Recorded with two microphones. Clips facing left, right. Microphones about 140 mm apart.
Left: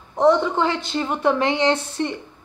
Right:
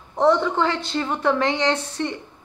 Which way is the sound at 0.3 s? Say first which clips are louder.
Left 1 dB; 15° left (ahead or behind).